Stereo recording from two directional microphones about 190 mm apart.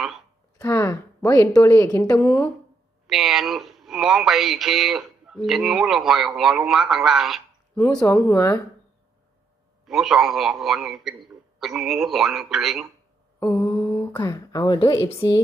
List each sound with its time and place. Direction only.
0.6 s speech: 15° left (ahead or behind)
3.1 s speech: centre (ahead or behind)
7.8 s speech: 10° left (ahead or behind)
9.8 s speech: centre (ahead or behind)
13.4 s mantra: 10° left (ahead or behind)
14.1 s a sound: 20° left (ahead or behind)